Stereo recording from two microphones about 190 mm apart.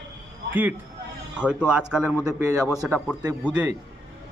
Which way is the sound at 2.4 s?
15° right (ahead or behind).